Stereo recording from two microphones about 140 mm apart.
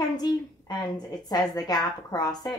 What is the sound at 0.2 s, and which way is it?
A woman's voice, 30° left (ahead or behind).